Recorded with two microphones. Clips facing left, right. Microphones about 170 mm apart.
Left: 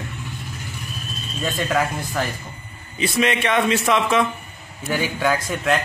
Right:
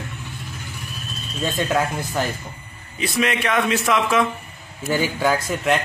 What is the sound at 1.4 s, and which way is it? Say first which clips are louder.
Speech: right 1 dB; centre (ahead or behind).